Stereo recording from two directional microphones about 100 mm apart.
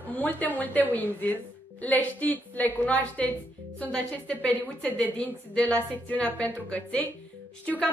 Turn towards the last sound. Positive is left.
turn(degrees=10)  # may be behind; listen again after turning